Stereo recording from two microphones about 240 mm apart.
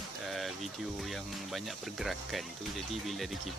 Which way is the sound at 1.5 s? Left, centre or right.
Centre.